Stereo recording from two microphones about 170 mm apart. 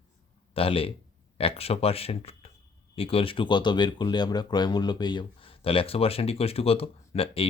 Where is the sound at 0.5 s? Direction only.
35° left (ahead or behind).